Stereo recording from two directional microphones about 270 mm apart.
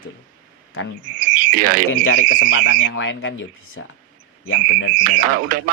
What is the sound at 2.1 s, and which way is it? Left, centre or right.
Speech, left.